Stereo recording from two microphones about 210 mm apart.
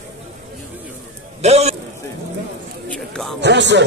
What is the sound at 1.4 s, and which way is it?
Speech, 30° right (ahead or behind).